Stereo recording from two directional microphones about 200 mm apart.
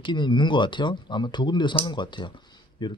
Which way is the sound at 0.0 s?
25° left (ahead or behind).